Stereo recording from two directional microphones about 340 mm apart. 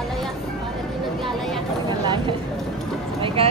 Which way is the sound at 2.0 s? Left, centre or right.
Centre.